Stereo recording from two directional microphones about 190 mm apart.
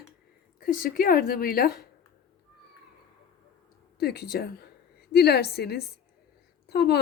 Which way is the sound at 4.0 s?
55° left (ahead or behind).